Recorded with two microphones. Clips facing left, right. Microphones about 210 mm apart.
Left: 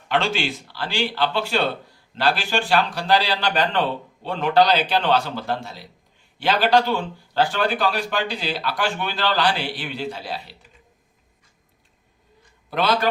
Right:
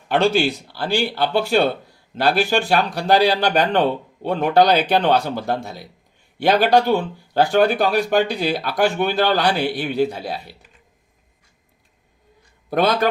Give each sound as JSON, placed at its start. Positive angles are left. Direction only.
{"t": 0.1, "sound": "speech", "side_deg": -50}
{"t": 12.7, "sound": "speech", "side_deg": -50}